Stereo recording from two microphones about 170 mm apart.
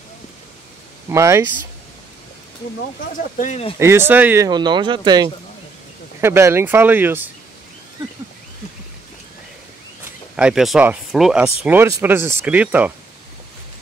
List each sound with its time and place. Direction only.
1.0 s speech: 15° right (ahead or behind)
3.2 s speech: 50° left (ahead or behind)
3.8 s speech: 15° right (ahead or behind)
4.5 s speech: 25° right (ahead or behind)
6.2 s speech: 15° right (ahead or behind)
10.3 s speech: 5° right (ahead or behind)
11.4 s speech: 15° right (ahead or behind)